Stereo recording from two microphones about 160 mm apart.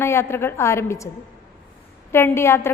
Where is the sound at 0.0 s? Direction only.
15° left (ahead or behind).